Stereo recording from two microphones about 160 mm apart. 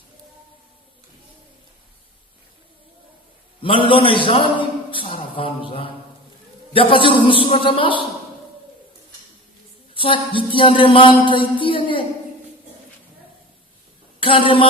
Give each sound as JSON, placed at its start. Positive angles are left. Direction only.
{"t": 3.6, "sound": "a man's voice", "side_deg": 35}
{"t": 9.9, "sound": "speech", "side_deg": 35}
{"t": 14.2, "sound": "a woman's voice", "side_deg": 35}